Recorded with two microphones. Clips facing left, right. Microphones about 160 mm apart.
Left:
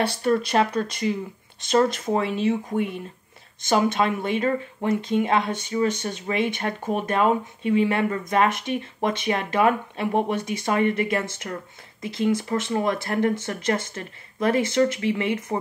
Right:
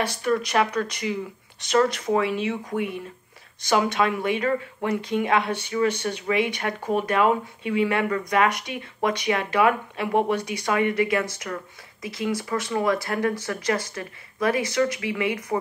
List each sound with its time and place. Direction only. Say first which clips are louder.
0.0 s speech: left 2 dB; 30° left (ahead or behind)